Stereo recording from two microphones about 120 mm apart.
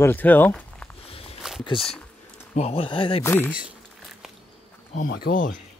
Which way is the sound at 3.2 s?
15° left (ahead or behind).